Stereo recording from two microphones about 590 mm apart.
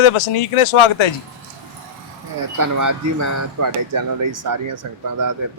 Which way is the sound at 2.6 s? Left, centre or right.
Right.